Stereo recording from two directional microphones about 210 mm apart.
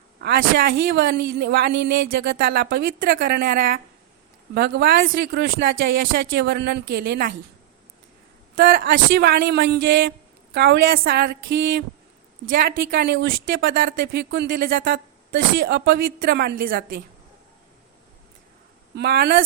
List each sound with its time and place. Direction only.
0.2 s speech: 50° right (ahead or behind)
8.5 s speech: 50° right (ahead or behind)
18.9 s speech: 50° right (ahead or behind)